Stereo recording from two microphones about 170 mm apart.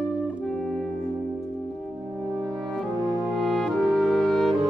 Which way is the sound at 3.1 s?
25° right (ahead or behind).